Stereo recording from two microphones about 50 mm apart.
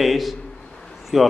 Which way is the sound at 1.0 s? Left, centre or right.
Centre.